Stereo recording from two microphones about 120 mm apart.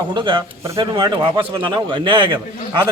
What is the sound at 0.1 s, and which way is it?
A man's voice, 40° right (ahead or behind).